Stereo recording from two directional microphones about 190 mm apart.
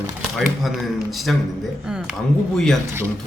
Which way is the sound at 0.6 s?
Centre (ahead or behind).